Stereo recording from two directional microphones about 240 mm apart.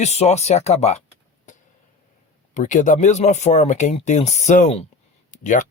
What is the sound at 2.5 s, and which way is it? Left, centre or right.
Speech, left.